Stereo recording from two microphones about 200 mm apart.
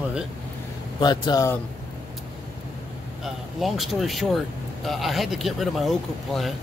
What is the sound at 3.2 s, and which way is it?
Speech, centre (ahead or behind).